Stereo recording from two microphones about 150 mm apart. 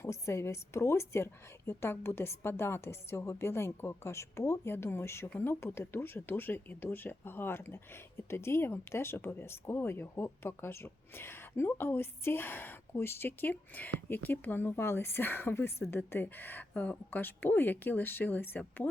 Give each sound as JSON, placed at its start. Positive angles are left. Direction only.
{"t": 0.0, "sound": "speech", "side_deg": 20}